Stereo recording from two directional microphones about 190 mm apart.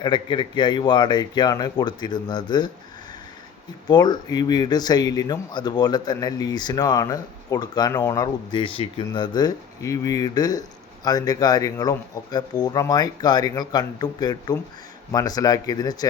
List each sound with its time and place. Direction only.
0.0 s speech: 25° left (ahead or behind)
3.8 s speech: 20° left (ahead or behind)